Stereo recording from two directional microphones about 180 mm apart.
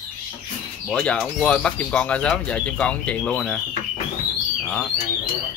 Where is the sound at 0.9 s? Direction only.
5° left (ahead or behind).